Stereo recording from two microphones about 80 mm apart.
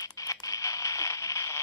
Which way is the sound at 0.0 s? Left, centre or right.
Left.